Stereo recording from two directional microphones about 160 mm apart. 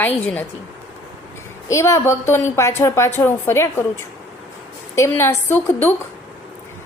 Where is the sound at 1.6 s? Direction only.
20° left (ahead or behind).